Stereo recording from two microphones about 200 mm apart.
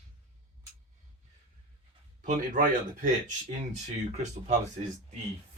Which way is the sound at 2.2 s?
40° right (ahead or behind).